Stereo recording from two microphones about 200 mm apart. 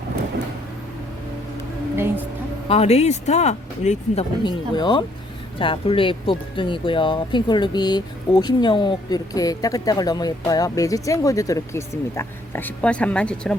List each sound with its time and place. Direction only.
2.6 s speech: 30° left (ahead or behind); by 13.6 s 5° left (ahead or behind)